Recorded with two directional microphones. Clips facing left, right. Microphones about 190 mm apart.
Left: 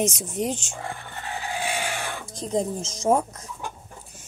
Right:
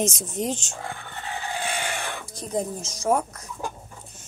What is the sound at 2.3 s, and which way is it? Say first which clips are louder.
Speech: left 3 dB; 25° left (ahead or behind).